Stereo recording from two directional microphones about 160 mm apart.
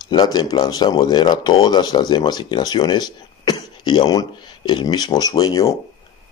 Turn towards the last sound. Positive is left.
turn(degrees=25)  # may be behind; listen again after turning